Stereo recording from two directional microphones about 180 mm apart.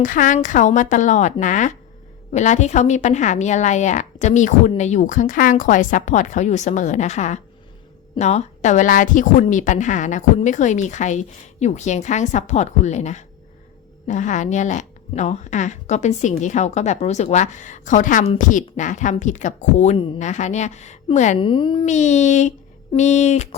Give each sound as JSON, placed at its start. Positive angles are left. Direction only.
{"t": 0.0, "sound": "a woman's voice", "side_deg": 45}
{"t": 21.3, "sound": "a child's voice", "side_deg": 30}
{"t": 21.8, "sound": "a woman's voice", "side_deg": 40}